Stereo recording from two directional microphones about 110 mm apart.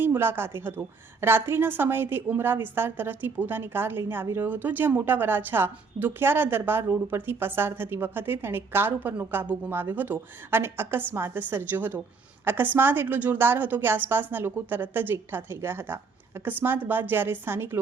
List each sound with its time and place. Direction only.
0.0 s a woman's voice: 20° right (ahead or behind)